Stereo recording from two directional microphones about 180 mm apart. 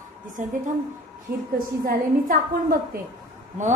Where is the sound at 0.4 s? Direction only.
45° right (ahead or behind).